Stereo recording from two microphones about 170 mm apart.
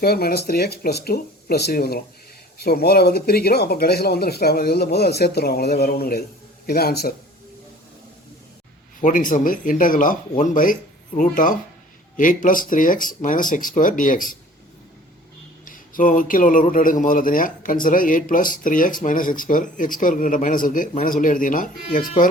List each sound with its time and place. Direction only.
0.0 s speech: 65° left (ahead or behind)
9.0 s a man's voice: 50° left (ahead or behind)
15.6 s a man's voice: 55° left (ahead or behind)